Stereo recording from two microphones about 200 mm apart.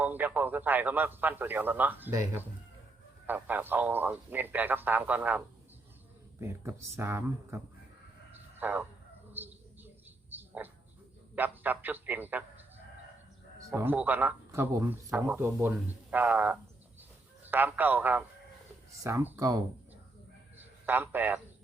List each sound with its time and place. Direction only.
0.0 s a man's voice: 10° right (ahead or behind)
6.4 s speech: 10° right (ahead or behind)
9.3 s a sound: 10° right (ahead or behind)
11.3 s speech: 10° right (ahead or behind)
13.6 s speech: 15° right (ahead or behind)
20.8 s speech: 10° right (ahead or behind)